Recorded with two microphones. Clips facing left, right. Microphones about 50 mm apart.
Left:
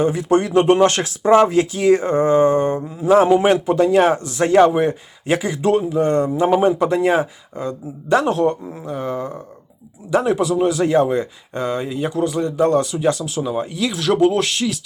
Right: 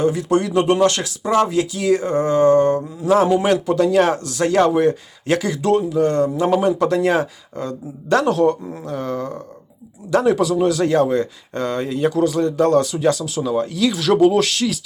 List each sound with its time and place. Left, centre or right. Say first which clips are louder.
0.0 s a man's voice: left 1 dB; left
13.9 s speech: right 1 dB; centre